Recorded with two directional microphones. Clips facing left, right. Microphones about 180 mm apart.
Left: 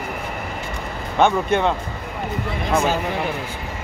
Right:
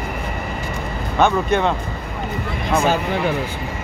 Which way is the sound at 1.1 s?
15° left (ahead or behind).